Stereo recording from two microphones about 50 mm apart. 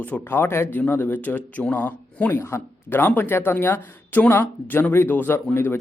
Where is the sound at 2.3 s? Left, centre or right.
Left.